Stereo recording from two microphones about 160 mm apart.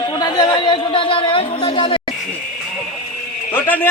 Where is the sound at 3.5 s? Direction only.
10° left (ahead or behind).